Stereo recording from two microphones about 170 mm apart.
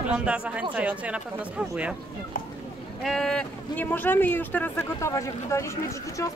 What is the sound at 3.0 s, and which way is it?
Speech, centre (ahead or behind).